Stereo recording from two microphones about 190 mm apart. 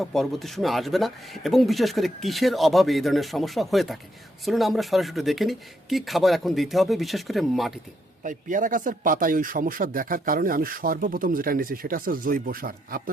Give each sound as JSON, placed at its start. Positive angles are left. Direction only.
{"t": 0.0, "sound": "speech", "side_deg": 0}
{"t": 8.2, "sound": "speech", "side_deg": -45}